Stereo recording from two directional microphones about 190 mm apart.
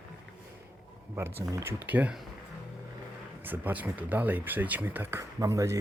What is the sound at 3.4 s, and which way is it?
Speech, 10° right (ahead or behind).